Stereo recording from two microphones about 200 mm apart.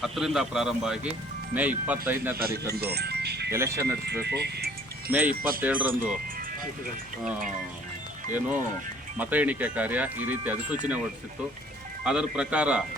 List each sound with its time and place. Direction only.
0.0 s speech: centre (ahead or behind)
2.4 s speech: 50° right (ahead or behind)
3.5 s speech: 15° right (ahead or behind)
4.0 s speech: 55° right (ahead or behind)
5.1 s speech: 10° right (ahead or behind)
9.1 s speech: 10° right (ahead or behind)
12.0 s speech: 5° right (ahead or behind)